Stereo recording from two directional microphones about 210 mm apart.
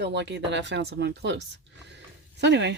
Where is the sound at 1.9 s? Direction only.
55° right (ahead or behind).